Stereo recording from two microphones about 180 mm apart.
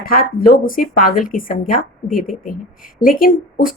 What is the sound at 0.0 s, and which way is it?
A woman's voice, 55° left (ahead or behind).